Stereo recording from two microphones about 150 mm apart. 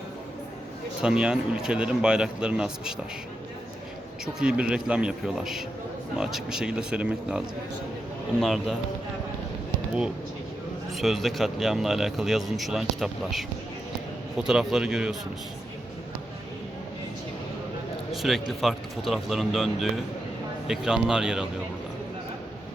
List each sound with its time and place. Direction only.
1.0 s speech: 5° right (ahead or behind)
4.4 s speech: 5° right (ahead or behind)
10.9 s speech: centre (ahead or behind)
18.1 s speech: centre (ahead or behind)